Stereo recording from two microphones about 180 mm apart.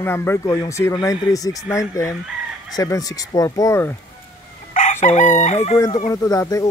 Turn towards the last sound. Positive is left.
turn(degrees=20)  # may be behind; listen again after turning